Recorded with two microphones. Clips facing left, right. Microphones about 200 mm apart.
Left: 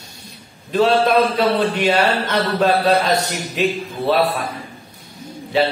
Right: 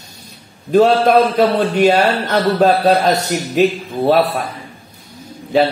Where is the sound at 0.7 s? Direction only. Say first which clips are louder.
Right 4 dB; 45° right (ahead or behind).